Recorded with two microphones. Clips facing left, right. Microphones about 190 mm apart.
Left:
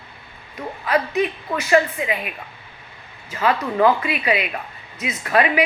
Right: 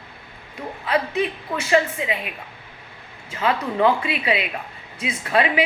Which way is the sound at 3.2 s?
25° right (ahead or behind).